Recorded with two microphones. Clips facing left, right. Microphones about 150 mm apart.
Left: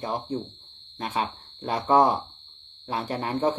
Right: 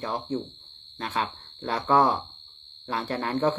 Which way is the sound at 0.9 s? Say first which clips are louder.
Left 1 dB; 15° left (ahead or behind).